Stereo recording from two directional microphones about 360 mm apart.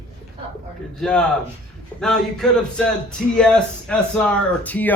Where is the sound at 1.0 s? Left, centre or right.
Centre.